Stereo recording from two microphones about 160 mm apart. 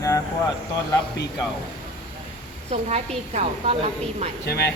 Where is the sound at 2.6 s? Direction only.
45° right (ahead or behind).